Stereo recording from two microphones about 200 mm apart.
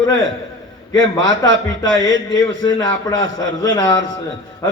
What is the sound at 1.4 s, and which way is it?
A man's voice, 15° left (ahead or behind).